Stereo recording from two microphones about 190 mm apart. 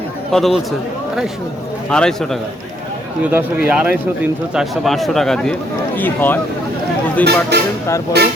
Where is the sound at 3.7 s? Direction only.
5° right (ahead or behind); by 6.4 s 10° left (ahead or behind).